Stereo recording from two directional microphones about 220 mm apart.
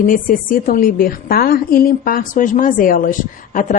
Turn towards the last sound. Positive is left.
turn(degrees=35)  # may be behind; listen again after turning